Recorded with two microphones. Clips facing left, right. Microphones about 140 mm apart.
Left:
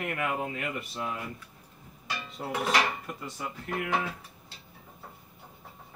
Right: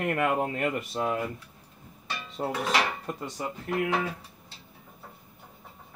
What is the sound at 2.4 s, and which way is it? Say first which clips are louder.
Speech: right 6 dB; 35° right (ahead or behind).